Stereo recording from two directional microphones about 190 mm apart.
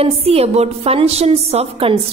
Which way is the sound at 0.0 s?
30° right (ahead or behind).